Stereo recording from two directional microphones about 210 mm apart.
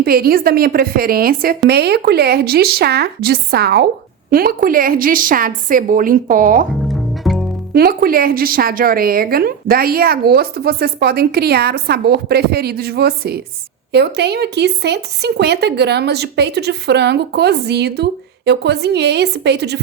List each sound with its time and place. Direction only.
0.0 s a woman's voice: 45° right (ahead or behind)
6.8 s music: centre (ahead or behind)
7.7 s speech: 45° right (ahead or behind)